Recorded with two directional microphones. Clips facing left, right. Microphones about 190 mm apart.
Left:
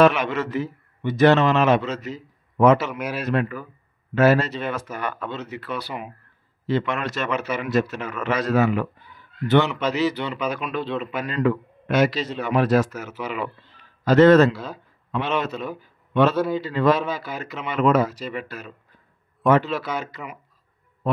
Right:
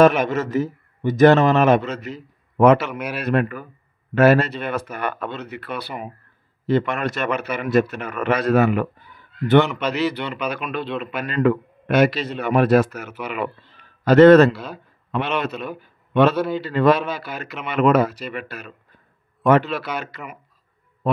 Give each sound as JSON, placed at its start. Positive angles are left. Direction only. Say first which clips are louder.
{"t": 0.0, "sound": "a man's voice", "louder": "right 2 dB", "side_deg": -45}
{"t": 15.8, "sound": "a sound", "louder": "right 3 dB", "side_deg": -65}
{"t": 16.6, "sound": "a man's voice", "louder": "right 5 dB", "side_deg": -65}